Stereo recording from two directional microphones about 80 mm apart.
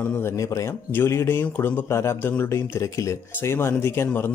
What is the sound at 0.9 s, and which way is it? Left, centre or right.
Speech, left.